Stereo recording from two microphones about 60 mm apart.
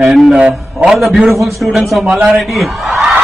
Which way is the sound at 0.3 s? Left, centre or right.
Right.